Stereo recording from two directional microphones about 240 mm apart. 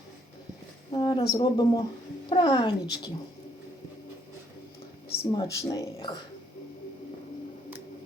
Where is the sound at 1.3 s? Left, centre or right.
Centre.